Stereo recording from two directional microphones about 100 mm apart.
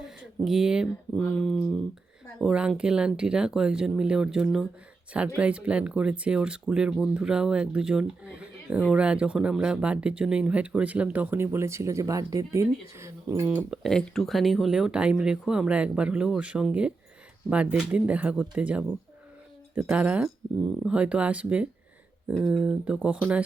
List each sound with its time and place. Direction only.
0.0 s speech: 5° right (ahead or behind)
1.1 s a sound: 5° left (ahead or behind)
1.5 s speech: 5° left (ahead or behind)
2.5 s speech: 10° right (ahead or behind); by 13.5 s 30° right (ahead or behind)
13.5 s speech: 15° right (ahead or behind)
13.8 s speech: 5° left (ahead or behind); by 18.9 s 10° right (ahead or behind)
19.9 s speech: 15° right (ahead or behind)